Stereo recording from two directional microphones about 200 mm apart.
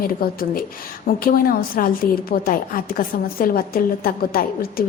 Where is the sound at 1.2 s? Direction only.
45° left (ahead or behind).